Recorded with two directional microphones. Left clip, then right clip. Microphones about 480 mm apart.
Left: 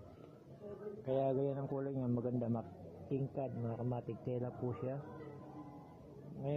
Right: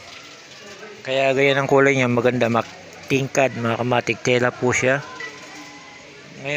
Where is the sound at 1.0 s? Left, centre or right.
Left.